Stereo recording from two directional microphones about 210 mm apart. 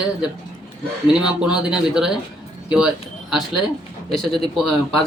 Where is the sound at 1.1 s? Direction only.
5° right (ahead or behind).